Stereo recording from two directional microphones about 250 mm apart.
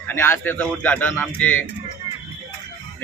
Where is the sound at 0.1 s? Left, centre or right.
Centre.